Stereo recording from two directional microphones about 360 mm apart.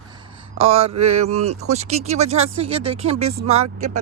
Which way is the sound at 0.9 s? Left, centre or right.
Right.